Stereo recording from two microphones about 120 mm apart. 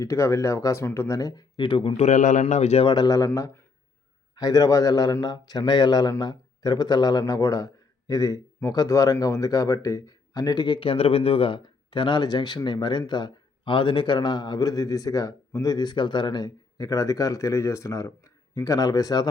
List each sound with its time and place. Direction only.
0.0 s speech: 25° left (ahead or behind); by 2.0 s 50° left (ahead or behind)
2.0 s a man's voice: 90° left; by 2.8 s 65° left (ahead or behind)
2.8 s speech: 35° left (ahead or behind)
10.8 s speech: 55° left (ahead or behind); by 19.3 s 30° left (ahead or behind)